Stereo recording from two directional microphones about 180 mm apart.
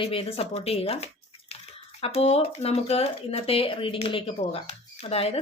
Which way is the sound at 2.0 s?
35° left (ahead or behind).